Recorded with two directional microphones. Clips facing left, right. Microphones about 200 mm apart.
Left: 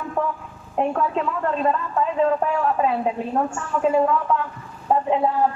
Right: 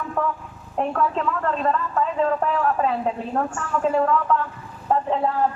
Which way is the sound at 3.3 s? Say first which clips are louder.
Left 1 dB; 10° left (ahead or behind).